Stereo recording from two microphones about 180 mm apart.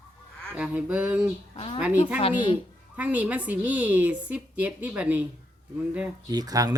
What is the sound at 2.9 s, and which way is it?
A woman's voice, 10° right (ahead or behind).